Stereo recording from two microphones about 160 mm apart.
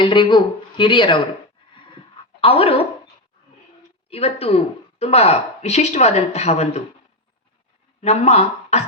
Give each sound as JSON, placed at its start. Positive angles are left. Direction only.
{"t": 0.0, "sound": "speech", "side_deg": 30}
{"t": 2.4, "sound": "speech", "side_deg": 35}
{"t": 4.1, "sound": "speech", "side_deg": 40}
{"t": 8.0, "sound": "speech", "side_deg": 45}